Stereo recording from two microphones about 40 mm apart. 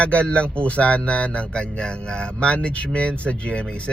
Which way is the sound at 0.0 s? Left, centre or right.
Left.